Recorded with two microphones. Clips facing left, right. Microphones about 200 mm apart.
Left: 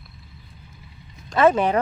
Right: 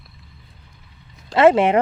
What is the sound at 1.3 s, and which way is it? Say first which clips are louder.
Speech: right 4 dB; 25° right (ahead or behind).